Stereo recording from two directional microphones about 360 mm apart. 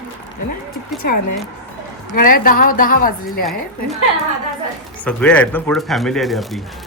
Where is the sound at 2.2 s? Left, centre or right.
Left.